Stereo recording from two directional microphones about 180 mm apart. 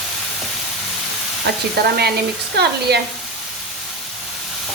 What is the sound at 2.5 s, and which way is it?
Frying, 65° right (ahead or behind).